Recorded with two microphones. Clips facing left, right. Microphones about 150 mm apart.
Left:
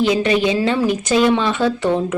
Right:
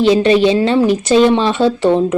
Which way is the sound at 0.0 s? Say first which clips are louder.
Right 6 dB; 25° right (ahead or behind).